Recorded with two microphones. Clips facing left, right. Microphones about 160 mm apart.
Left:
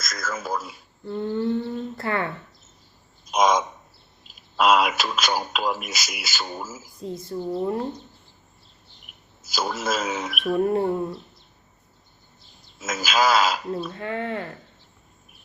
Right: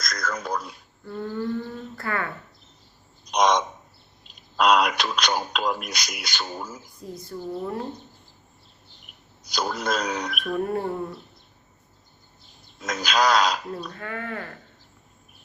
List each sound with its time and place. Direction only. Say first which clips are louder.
0.0 s a sound: right 1 dB; 5° left (ahead or behind)
1.0 s speech: left 4 dB; 20° left (ahead or behind)
3.2 s bird: left 1 dB; 5° left (ahead or behind)
4.3 s speech: left 1 dB; 5° left (ahead or behind)
7.0 s a woman's voice: left 5 dB; 25° left (ahead or behind)
9.1 s a sound: even; 5° left (ahead or behind)
9.4 s speech: even; 5° left (ahead or behind)
10.6 s a woman's voice: left 5 dB; 25° left (ahead or behind)
12.8 s speech: left 1 dB; 5° left (ahead or behind)
13.9 s a woman's voice: left 5 dB; 25° left (ahead or behind)